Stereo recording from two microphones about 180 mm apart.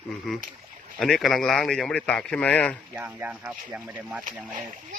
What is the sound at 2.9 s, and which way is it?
Speech, 10° right (ahead or behind).